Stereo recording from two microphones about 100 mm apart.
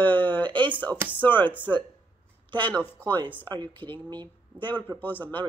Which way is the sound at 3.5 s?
50° right (ahead or behind).